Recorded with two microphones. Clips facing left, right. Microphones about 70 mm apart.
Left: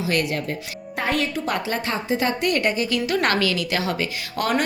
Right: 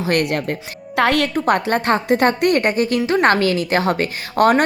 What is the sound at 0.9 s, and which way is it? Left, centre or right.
Speech, right.